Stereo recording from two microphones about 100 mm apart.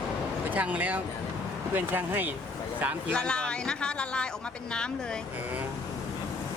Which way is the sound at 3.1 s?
10° left (ahead or behind).